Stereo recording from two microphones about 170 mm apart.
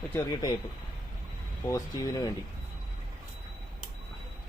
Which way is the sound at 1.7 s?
20° left (ahead or behind).